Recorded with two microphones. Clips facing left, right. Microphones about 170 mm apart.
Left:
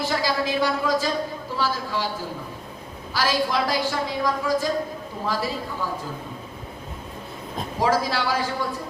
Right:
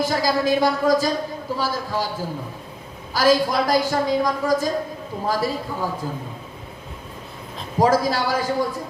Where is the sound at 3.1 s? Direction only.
45° right (ahead or behind).